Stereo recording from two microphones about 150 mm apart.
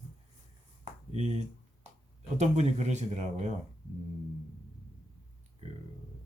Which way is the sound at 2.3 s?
50° right (ahead or behind).